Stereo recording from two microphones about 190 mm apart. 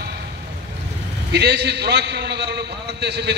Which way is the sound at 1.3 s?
60° right (ahead or behind).